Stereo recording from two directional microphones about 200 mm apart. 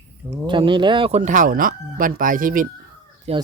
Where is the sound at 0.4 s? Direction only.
25° right (ahead or behind); by 2.6 s 45° right (ahead or behind).